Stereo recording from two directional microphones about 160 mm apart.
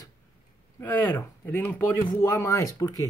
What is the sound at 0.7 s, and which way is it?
Speech, 15° left (ahead or behind).